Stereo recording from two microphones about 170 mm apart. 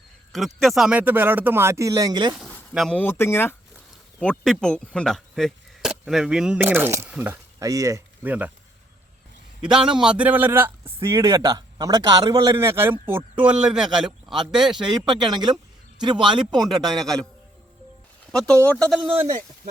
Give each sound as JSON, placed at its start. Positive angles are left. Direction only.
{"t": 0.3, "sound": "a man's voice", "side_deg": 0}
{"t": 2.7, "sound": "speech", "side_deg": 5}
{"t": 9.6, "sound": "a man's voice", "side_deg": -5}
{"t": 14.7, "sound": "speech", "side_deg": -25}
{"t": 16.6, "sound": "a man's voice", "side_deg": 0}
{"t": 18.3, "sound": "speech", "side_deg": 5}
{"t": 18.9, "sound": "a man's voice", "side_deg": -5}